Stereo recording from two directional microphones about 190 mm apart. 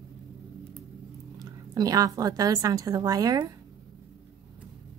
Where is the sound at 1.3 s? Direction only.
20° right (ahead or behind).